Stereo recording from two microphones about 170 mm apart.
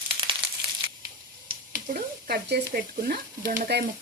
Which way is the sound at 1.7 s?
60° right (ahead or behind).